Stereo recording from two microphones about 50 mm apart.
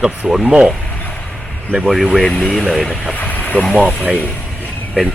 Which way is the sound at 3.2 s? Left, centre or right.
Left.